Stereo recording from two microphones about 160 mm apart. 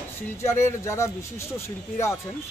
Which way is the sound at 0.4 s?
15° left (ahead or behind).